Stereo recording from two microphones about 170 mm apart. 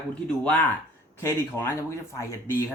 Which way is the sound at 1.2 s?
15° left (ahead or behind).